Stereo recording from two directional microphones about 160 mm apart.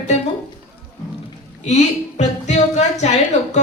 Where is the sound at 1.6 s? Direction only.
45° left (ahead or behind).